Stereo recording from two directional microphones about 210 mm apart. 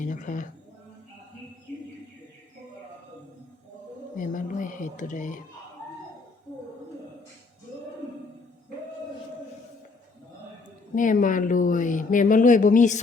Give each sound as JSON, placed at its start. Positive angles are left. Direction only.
{"t": 0.0, "sound": "speech", "side_deg": 40}
{"t": 4.2, "sound": "a woman's voice", "side_deg": 40}
{"t": 10.9, "sound": "speech", "side_deg": 40}